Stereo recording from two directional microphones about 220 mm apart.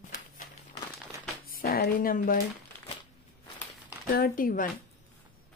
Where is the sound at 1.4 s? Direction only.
40° left (ahead or behind).